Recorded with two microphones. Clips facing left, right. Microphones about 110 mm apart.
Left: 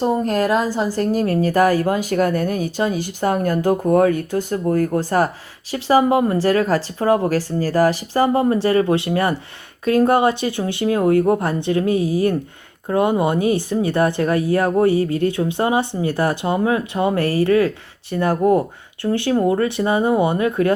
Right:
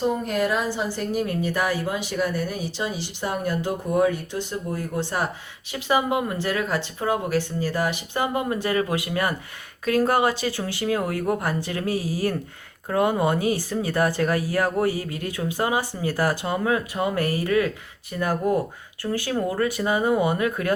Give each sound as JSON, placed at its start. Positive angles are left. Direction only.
{"t": 0.0, "sound": "speech", "side_deg": 40}
{"t": 3.7, "sound": "speech", "side_deg": 60}